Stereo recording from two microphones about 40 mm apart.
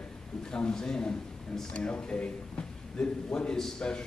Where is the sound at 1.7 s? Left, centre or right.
Left.